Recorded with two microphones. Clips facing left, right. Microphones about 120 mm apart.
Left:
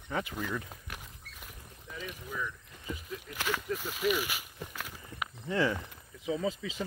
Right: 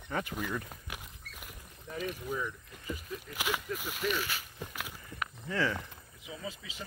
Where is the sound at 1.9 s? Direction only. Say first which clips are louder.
Right 5 dB; 45° right (ahead or behind).